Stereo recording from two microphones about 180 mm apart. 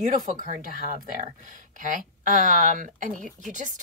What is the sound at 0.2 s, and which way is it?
Speech, 45° right (ahead or behind).